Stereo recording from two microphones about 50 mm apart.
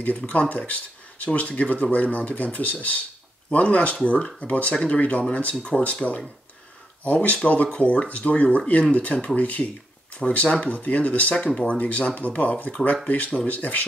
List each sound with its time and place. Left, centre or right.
0.3 s speech: left